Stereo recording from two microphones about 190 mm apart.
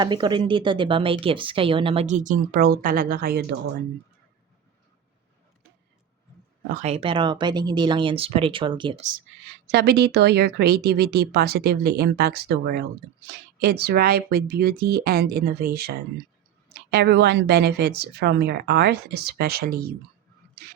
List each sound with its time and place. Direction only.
0.0 s a woman's voice: 25° right (ahead or behind); by 3.4 s 50° right (ahead or behind)
6.7 s a woman's voice: 40° right (ahead or behind)
9.7 s speech: 60° right (ahead or behind)
16.9 s speech: 60° right (ahead or behind)